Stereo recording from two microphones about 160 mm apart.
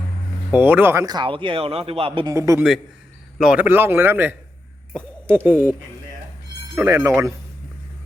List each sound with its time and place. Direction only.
0.5 s speech: 10° right (ahead or behind); by 2.3 s 35° right (ahead or behind)
2.3 s a man's voice: 20° right (ahead or behind)
3.3 s speech: 5° right (ahead or behind)
5.5 s speech: 10° right (ahead or behind)
6.7 s speech: 15° right (ahead or behind)